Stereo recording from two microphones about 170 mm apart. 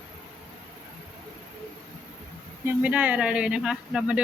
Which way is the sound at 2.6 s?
10° right (ahead or behind).